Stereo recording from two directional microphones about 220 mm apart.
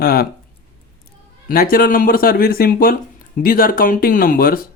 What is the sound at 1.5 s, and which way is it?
Speech, 40° left (ahead or behind).